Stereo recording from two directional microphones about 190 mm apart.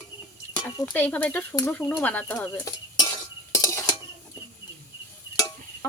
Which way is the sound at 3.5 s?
15° left (ahead or behind).